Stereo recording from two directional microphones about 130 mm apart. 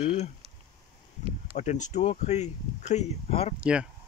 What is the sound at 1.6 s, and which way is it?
Speech, 65° left (ahead or behind).